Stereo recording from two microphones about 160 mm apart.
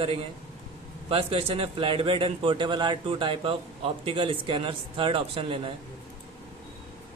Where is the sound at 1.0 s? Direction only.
35° right (ahead or behind).